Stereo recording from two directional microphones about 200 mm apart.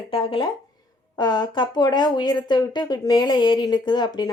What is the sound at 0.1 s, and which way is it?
Speech, 25° left (ahead or behind).